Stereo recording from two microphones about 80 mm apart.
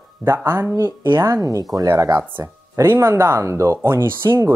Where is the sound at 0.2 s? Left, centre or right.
Right.